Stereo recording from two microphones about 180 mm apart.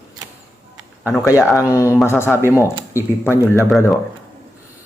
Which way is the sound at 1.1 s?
20° left (ahead or behind).